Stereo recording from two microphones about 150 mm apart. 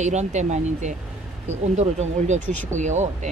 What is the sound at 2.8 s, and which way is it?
Speech, 55° right (ahead or behind).